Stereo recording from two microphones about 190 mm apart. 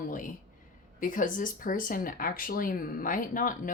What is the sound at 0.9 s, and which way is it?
Speech, 45° left (ahead or behind).